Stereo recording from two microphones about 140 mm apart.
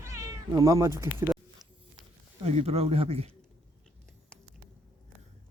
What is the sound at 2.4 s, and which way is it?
Speech, 50° right (ahead or behind).